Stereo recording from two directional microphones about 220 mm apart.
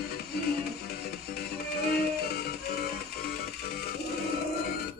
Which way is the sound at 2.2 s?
45° left (ahead or behind).